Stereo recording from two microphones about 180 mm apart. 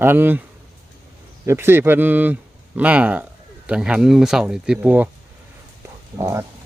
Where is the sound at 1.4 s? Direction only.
15° right (ahead or behind).